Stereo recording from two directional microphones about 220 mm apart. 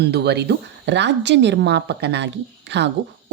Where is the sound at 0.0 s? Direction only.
50° right (ahead or behind).